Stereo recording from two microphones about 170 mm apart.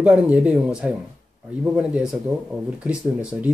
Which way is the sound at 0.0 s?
5° right (ahead or behind).